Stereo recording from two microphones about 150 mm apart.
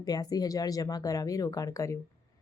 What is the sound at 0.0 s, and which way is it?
Speech, 25° left (ahead or behind).